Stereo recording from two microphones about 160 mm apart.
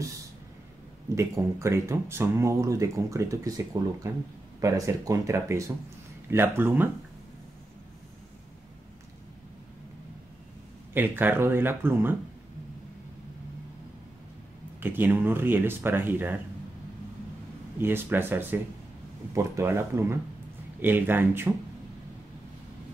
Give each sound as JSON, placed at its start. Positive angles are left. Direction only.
{"t": 1.1, "sound": "speech", "side_deg": -20}
{"t": 10.9, "sound": "speech", "side_deg": -10}
{"t": 14.8, "sound": "speech", "side_deg": -15}
{"t": 17.7, "sound": "speech", "side_deg": -15}